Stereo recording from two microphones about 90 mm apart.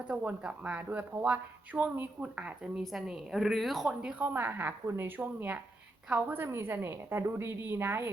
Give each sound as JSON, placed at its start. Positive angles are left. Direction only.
{"t": 0.1, "sound": "speech", "side_deg": -10}
{"t": 2.8, "sound": "a woman's voice", "side_deg": 0}
{"t": 4.2, "sound": "a woman's voice", "side_deg": -20}